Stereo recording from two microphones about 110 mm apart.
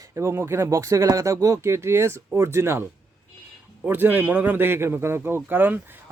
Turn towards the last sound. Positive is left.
turn(degrees=-20)  # may be behind; listen again after turning